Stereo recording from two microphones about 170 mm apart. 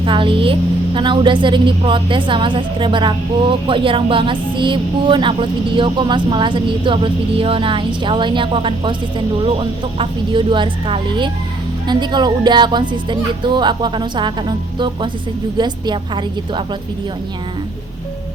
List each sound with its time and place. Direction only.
0.0 s a woman's voice: 30° right (ahead or behind)